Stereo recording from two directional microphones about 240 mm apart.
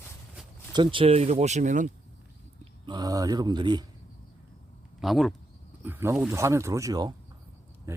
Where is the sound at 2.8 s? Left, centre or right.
Centre.